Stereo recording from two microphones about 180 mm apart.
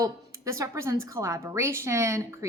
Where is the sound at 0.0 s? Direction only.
20° right (ahead or behind).